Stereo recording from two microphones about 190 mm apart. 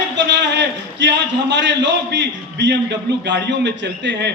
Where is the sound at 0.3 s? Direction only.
65° right (ahead or behind).